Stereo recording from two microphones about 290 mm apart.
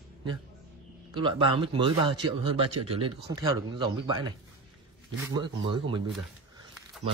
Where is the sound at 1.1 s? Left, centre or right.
Centre.